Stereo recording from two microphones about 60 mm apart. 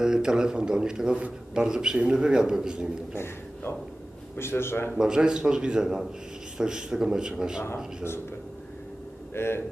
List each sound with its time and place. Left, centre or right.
0.0 s a man's voice: centre
4.4 s a man's voice: left
4.9 s a man's voice: centre
7.6 s a man's voice: left
9.3 s a man's voice: left